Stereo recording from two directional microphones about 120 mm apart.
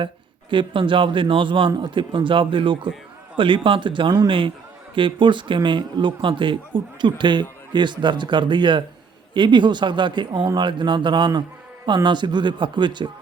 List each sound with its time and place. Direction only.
0.5 s a man's voice: 45° right (ahead or behind)